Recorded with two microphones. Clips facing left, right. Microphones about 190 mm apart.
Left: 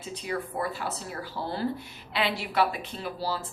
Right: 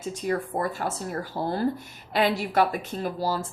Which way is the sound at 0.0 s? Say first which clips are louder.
Right 5 dB; 45° right (ahead or behind).